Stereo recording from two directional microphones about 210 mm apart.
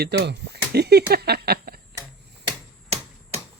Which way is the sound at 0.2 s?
50° right (ahead or behind).